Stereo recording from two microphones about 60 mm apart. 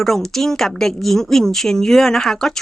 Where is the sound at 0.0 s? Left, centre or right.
Centre.